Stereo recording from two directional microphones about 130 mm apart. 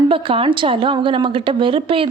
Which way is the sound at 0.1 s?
45° right (ahead or behind).